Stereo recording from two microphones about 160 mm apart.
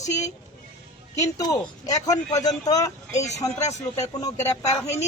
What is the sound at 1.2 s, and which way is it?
A man's voice, 20° left (ahead or behind).